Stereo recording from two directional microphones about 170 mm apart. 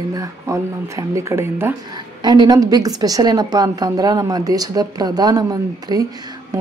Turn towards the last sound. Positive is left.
turn(degrees=-20)  # may be behind; listen again after turning